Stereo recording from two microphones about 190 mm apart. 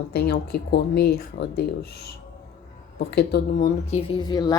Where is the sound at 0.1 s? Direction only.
55° left (ahead or behind).